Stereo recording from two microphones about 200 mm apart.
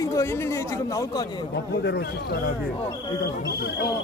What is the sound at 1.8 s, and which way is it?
Speech, 55° left (ahead or behind).